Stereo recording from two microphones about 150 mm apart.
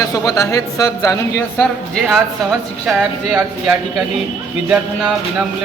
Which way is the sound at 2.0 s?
Centre (ahead or behind).